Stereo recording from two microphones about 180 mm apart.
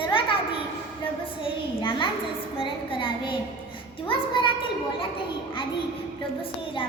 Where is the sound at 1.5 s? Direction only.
30° left (ahead or behind).